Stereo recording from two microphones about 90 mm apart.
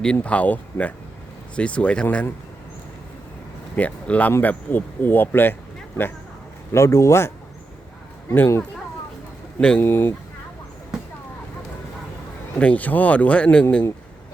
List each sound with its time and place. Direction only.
0.0 s speech: 10° left (ahead or behind)
3.8 s speech: 15° left (ahead or behind)
6.7 s speech: 35° left (ahead or behind)
9.6 s speech: 10° left (ahead or behind)
9.8 s speech: 25° left (ahead or behind)
12.5 s speech: 15° left (ahead or behind)